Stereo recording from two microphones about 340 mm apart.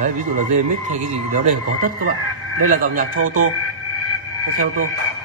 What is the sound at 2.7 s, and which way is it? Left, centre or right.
Speech, right.